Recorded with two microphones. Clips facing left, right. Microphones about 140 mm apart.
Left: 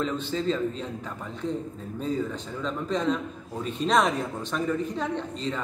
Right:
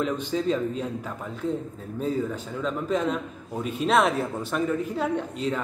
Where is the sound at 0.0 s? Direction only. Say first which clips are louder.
Right 2 dB; 10° right (ahead or behind).